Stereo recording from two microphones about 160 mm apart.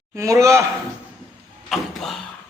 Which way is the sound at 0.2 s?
20° right (ahead or behind).